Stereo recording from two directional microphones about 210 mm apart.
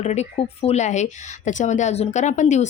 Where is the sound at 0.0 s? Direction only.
30° left (ahead or behind).